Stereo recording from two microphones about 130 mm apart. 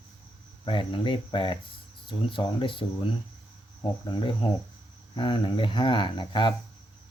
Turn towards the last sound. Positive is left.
turn(degrees=35)  # may be behind; listen again after turning